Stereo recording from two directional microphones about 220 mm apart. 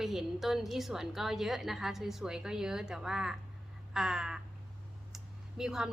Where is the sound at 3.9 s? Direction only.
5° right (ahead or behind).